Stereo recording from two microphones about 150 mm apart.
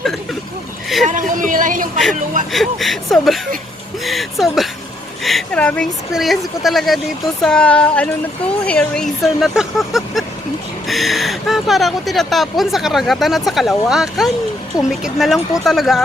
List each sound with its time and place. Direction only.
1.0 s speech: 60° right (ahead or behind)
2.5 s speech: centre (ahead or behind)